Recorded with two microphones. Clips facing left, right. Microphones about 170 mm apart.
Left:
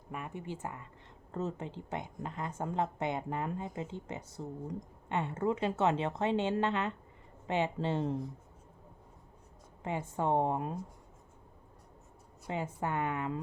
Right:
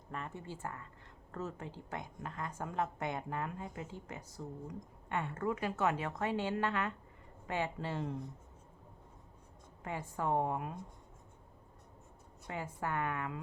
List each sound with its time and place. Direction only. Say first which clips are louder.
0.1 s speech: left 3 dB; 15° left (ahead or behind)
9.8 s speech: left 4 dB; 25° left (ahead or behind)
12.5 s speech: left 4 dB; 20° left (ahead or behind)